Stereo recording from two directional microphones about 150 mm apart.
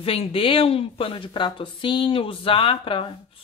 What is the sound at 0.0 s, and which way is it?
Speech, 40° left (ahead or behind).